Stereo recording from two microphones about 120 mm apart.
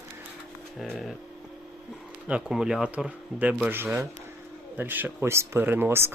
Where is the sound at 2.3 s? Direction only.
5° right (ahead or behind).